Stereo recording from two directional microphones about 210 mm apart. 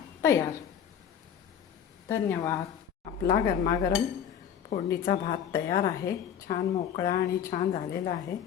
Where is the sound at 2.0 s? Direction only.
15° left (ahead or behind).